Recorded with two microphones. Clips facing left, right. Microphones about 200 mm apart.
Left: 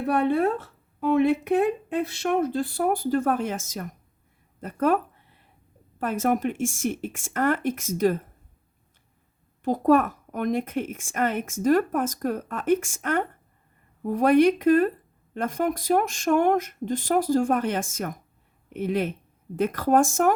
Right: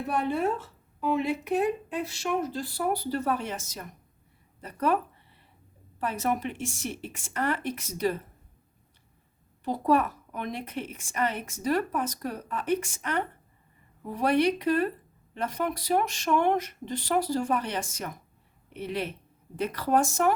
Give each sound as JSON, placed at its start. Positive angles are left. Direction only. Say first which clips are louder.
{"t": 0.0, "sound": "speech", "louder": "left 5 dB", "side_deg": 60}
{"t": 6.0, "sound": "speech", "louder": "left 5 dB", "side_deg": 50}
{"t": 9.6, "sound": "speech", "louder": "left 5 dB", "side_deg": 45}